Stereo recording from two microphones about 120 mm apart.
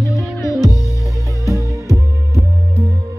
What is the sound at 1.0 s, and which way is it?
Music, 25° right (ahead or behind).